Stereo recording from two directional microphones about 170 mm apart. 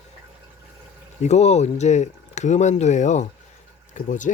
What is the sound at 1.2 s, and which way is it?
Speech, 40° left (ahead or behind).